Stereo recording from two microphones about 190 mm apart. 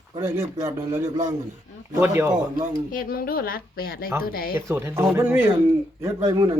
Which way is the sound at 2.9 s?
50° left (ahead or behind).